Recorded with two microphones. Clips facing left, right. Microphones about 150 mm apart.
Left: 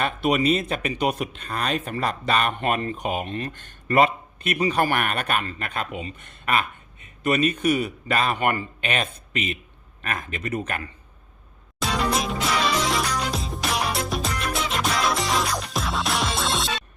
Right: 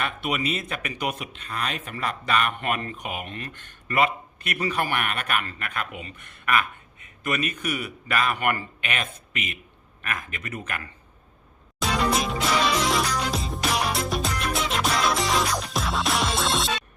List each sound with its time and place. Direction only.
0.0 s speech: 35° left (ahead or behind)
1.2 s speech: 40° left (ahead or behind); by 4.7 s 20° left (ahead or behind)
4.7 s speech: 40° left (ahead or behind)
11.8 s music: centre (ahead or behind)